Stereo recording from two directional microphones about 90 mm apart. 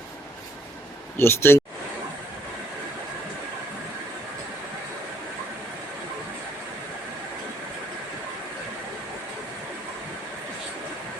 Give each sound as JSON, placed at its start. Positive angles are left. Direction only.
{"t": 1.1, "sound": "speech", "side_deg": 30}